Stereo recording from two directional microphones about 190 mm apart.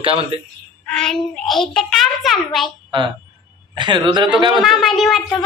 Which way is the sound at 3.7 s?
25° right (ahead or behind).